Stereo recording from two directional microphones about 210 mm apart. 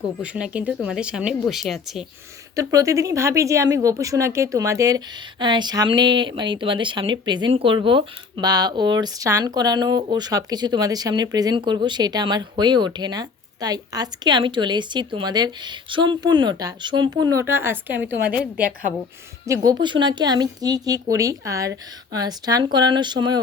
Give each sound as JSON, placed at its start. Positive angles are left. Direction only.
{"t": 0.2, "sound": "speech", "side_deg": -5}
{"t": 2.6, "sound": "a woman's voice", "side_deg": -15}
{"t": 19.5, "sound": "speech", "side_deg": -20}